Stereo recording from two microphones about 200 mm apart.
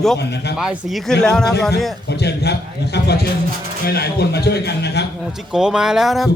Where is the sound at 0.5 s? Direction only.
5° right (ahead or behind).